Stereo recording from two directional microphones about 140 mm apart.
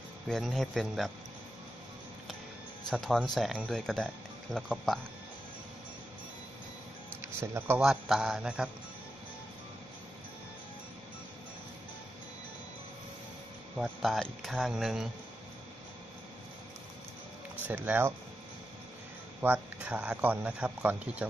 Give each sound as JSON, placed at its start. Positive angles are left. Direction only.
{"t": 0.3, "sound": "speech", "side_deg": 0}
{"t": 2.9, "sound": "speech", "side_deg": 0}
{"t": 7.3, "sound": "speech", "side_deg": -15}
{"t": 7.8, "sound": "speech", "side_deg": -5}
{"t": 13.7, "sound": "speech", "side_deg": 5}
{"t": 17.6, "sound": "speech", "side_deg": -10}
{"t": 19.4, "sound": "speech", "side_deg": -10}